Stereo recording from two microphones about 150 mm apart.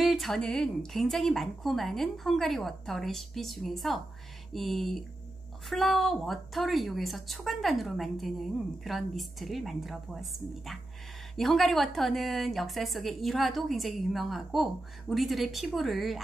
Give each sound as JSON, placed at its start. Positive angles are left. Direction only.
{"t": 0.0, "sound": "a woman's voice", "side_deg": 0}